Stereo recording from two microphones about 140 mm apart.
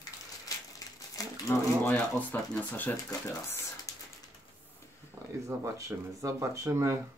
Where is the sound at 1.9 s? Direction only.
10° left (ahead or behind).